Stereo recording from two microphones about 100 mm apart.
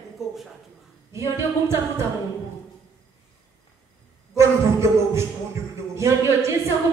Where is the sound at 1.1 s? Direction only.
30° right (ahead or behind).